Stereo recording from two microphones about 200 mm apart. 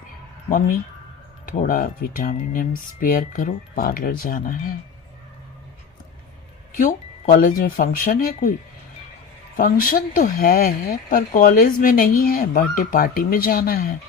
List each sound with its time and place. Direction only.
1.5 s speech: 45° left (ahead or behind)
6.7 s speech: 40° left (ahead or behind)
9.6 s speech: 45° left (ahead or behind)